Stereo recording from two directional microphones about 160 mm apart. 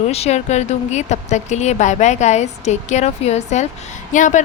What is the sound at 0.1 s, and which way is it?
A woman's voice, 40° left (ahead or behind).